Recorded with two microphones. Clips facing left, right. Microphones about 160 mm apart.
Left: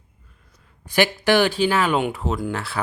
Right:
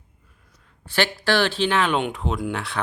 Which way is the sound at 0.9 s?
15° left (ahead or behind).